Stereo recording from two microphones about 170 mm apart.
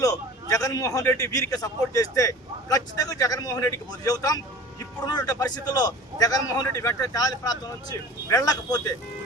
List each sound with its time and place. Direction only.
0.0 s a man's voice: 20° left (ahead or behind)